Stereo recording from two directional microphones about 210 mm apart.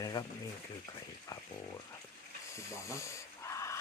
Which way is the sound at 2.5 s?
15° left (ahead or behind).